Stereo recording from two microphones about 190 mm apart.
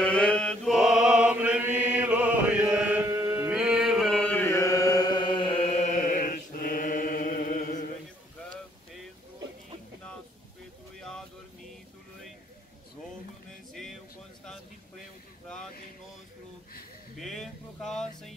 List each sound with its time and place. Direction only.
0.0 s chant: 5° left (ahead or behind); by 3.4 s 20° right (ahead or behind)
3.4 s chant: 5° right (ahead or behind); by 7.8 s 45° left (ahead or behind)
11.0 s vehicle: 5° left (ahead or behind)
17.2 s a sound: centre (ahead or behind)